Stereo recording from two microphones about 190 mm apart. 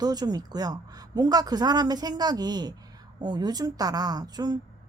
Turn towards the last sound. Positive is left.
turn(degrees=-20)  # may be behind; listen again after turning